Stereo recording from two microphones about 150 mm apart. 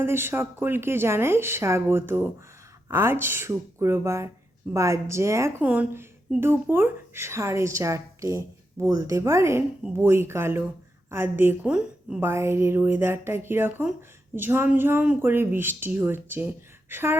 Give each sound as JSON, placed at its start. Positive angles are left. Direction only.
{"t": 0.0, "sound": "a woman's voice", "side_deg": -15}
{"t": 12.2, "sound": "a woman's voice", "side_deg": -15}